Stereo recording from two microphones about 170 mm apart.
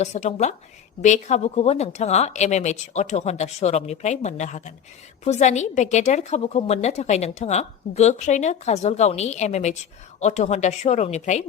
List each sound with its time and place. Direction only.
0.0 s a woman's voice: 40° left (ahead or behind)